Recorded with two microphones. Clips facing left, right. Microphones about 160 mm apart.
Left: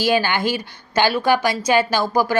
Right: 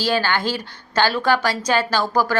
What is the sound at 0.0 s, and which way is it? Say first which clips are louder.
A woman's voice: left 2 dB; 15° left (ahead or behind).